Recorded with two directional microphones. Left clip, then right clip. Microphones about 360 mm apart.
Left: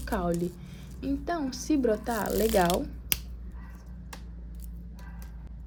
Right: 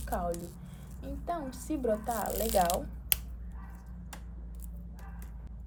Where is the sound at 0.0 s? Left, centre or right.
Left.